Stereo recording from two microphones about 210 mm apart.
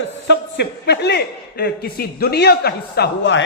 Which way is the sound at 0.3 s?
55° left (ahead or behind).